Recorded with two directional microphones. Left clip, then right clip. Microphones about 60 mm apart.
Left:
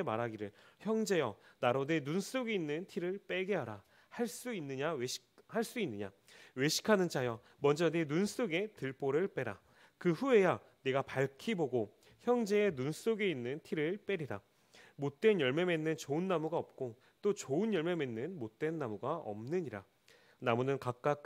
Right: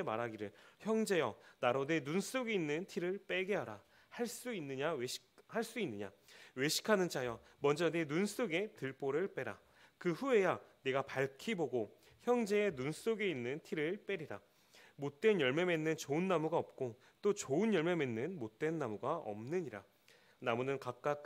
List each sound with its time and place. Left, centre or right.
0.0 s speech: centre
5.5 s speech: centre
11.7 s a sound: centre
12.5 s speech: centre
14.0 s a sound: left
15.0 s speech: centre
20.4 s a man's voice: left